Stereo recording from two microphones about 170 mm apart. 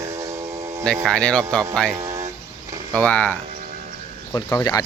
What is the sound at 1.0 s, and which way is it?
Speech, 5° left (ahead or behind).